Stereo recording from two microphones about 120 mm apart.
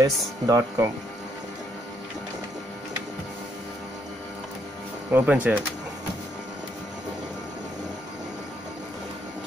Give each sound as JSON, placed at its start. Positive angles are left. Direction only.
{"t": 0.0, "sound": "speech", "side_deg": -25}
{"t": 5.1, "sound": "speech", "side_deg": -15}